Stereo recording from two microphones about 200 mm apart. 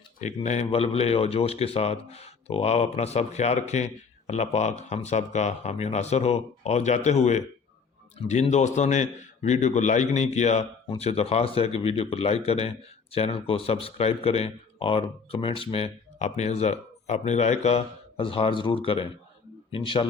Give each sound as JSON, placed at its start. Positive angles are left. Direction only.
{"t": 0.2, "sound": "speech", "side_deg": 35}